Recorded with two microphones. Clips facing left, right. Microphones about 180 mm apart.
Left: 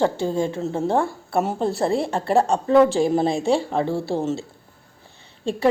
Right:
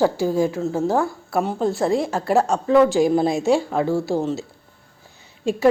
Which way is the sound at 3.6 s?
Centre (ahead or behind).